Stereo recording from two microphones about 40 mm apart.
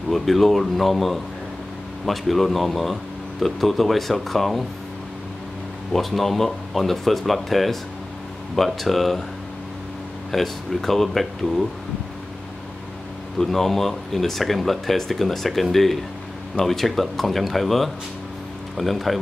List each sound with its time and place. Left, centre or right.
0.1 s speech: centre
5.9 s speech: centre
10.3 s speech: centre
13.4 s speech: centre